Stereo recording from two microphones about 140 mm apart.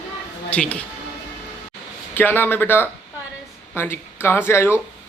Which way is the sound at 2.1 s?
15° left (ahead or behind).